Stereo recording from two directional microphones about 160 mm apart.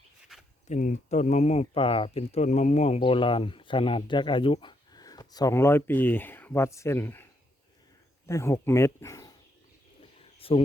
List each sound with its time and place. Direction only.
0.7 s speech: 50° left (ahead or behind); by 7.3 s 15° left (ahead or behind)
8.3 s speech: 20° left (ahead or behind)
10.0 s a sound: 35° left (ahead or behind)